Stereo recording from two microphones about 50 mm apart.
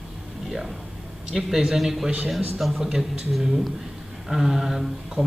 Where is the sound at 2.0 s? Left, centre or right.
Centre.